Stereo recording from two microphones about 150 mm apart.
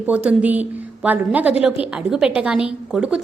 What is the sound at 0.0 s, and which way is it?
A woman's voice, 10° right (ahead or behind).